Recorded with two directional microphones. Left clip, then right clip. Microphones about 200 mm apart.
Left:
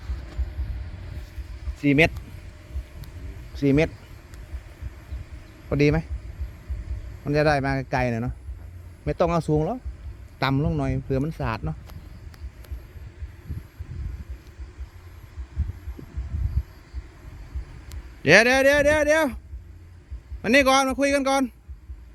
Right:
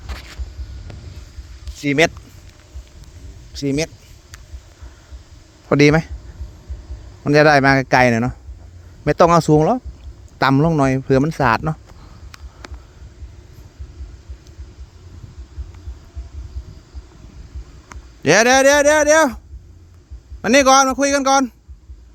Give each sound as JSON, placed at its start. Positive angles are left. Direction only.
{"t": 1.9, "sound": "speech", "side_deg": -30}
{"t": 3.6, "sound": "speech", "side_deg": -50}
{"t": 5.6, "sound": "speech", "side_deg": -50}
{"t": 7.3, "sound": "speech", "side_deg": -55}
{"t": 10.3, "sound": "speech", "side_deg": -40}
{"t": 18.2, "sound": "speech", "side_deg": -20}
{"t": 20.4, "sound": "speech", "side_deg": -20}